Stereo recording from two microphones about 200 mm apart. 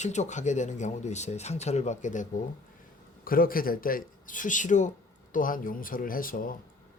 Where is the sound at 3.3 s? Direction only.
45° left (ahead or behind).